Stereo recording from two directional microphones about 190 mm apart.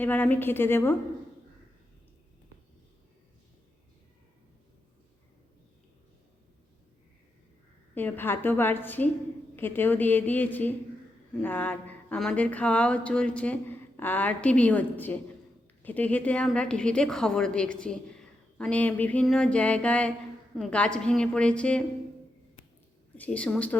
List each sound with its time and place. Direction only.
0.0 s speech: 10° left (ahead or behind)
7.9 s a woman's voice: 10° left (ahead or behind)
23.1 s speech: 10° left (ahead or behind)